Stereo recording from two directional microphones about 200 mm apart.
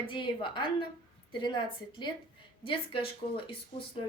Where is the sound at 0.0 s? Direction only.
25° left (ahead or behind).